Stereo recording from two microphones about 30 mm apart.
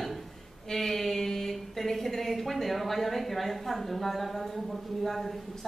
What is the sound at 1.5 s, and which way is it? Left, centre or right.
A woman's voice, centre.